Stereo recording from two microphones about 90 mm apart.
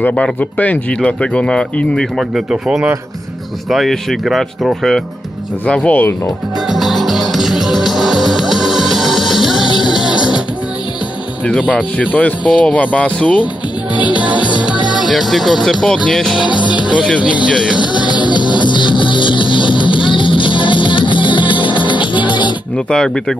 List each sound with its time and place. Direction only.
0.1 s speech: 15° left (ahead or behind)
2.1 s speech: 5° right (ahead or behind)
5.7 s speech: 15° left (ahead or behind)
6.2 s music: centre (ahead or behind)
12.1 s speech: 15° left (ahead or behind)
14.0 s music: 15° right (ahead or behind)
15.1 s speech: centre (ahead or behind)
16.3 s music: 10° right (ahead or behind)
16.7 s speech: 15° right (ahead or behind)
17.5 s music: 10° right (ahead or behind)
17.7 s music: 55° left (ahead or behind)
22.8 s speech: 5° left (ahead or behind)